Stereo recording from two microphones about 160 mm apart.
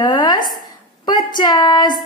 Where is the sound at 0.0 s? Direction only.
25° left (ahead or behind).